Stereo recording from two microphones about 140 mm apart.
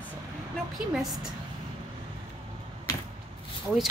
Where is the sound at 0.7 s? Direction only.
5° right (ahead or behind).